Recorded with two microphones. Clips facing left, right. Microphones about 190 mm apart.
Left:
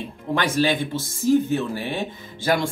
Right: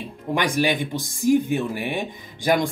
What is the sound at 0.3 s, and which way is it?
Speech, 15° right (ahead or behind).